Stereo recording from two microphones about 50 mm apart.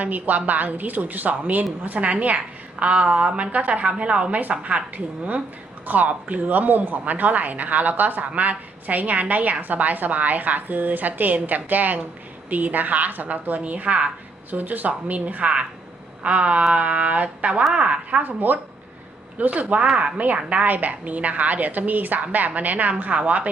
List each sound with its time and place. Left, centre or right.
0.0 s a woman's voice: right
18.2 s a woman's voice: right